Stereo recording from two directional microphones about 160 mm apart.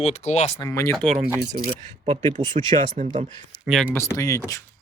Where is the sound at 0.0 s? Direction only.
45° left (ahead or behind).